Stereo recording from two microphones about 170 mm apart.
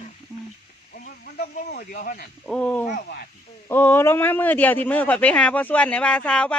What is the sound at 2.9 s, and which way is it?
Speech, 65° left (ahead or behind).